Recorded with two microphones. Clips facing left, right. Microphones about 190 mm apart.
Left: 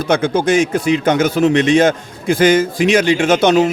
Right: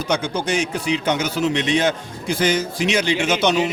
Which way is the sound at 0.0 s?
50° left (ahead or behind).